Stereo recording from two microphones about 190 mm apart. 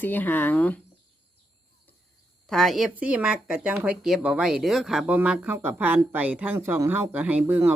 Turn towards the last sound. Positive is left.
turn(degrees=-10)  # may be behind; listen again after turning